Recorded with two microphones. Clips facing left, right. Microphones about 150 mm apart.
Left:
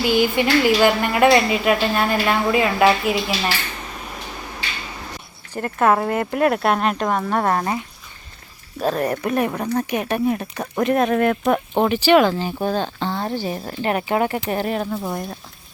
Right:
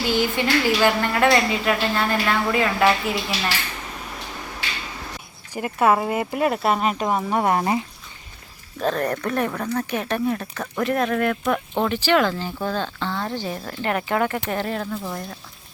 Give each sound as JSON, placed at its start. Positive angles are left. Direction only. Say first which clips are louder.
{"t": 0.1, "sound": "a woman's voice", "louder": "left 3 dB", "side_deg": 15}
{"t": 5.5, "sound": "speech", "louder": "left 1 dB", "side_deg": -5}
{"t": 8.8, "sound": "a woman's voice", "louder": "left 2 dB", "side_deg": 10}